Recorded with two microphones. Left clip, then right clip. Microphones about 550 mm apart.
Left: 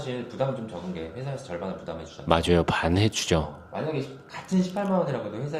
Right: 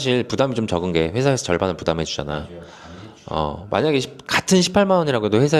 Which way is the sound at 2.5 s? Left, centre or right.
Left.